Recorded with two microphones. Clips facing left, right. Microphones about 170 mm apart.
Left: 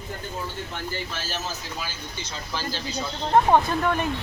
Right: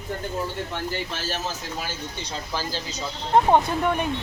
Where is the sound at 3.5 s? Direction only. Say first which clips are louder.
Even; 15° right (ahead or behind).